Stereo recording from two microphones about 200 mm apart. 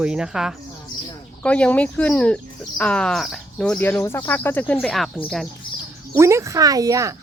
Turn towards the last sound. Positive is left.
turn(degrees=-15)  # may be behind; listen again after turning